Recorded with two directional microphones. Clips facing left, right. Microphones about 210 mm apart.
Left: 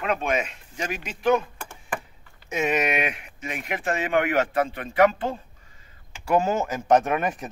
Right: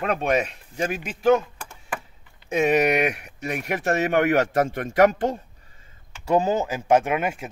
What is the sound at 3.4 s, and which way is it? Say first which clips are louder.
A man's voice: right 4 dB; 40° right (ahead or behind).